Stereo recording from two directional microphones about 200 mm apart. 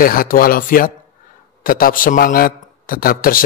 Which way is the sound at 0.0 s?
45° left (ahead or behind).